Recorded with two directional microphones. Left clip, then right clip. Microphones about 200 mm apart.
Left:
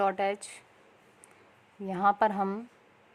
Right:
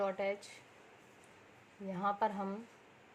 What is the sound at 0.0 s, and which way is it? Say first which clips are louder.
Speech: left 8 dB; 50° left (ahead or behind).